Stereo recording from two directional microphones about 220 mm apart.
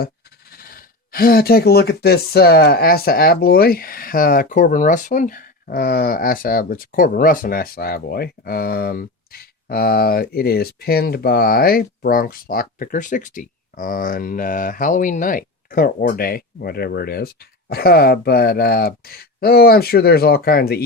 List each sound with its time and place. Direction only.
0.5 s speech: 40° left (ahead or behind)